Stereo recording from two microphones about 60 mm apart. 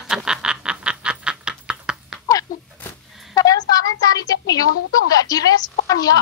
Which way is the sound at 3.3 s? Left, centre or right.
Left.